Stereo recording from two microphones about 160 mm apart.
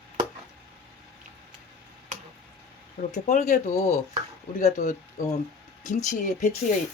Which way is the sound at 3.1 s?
45° left (ahead or behind).